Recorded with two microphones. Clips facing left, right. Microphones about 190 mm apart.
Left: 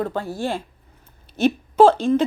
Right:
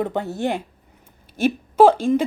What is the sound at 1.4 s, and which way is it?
Speech, 10° right (ahead or behind).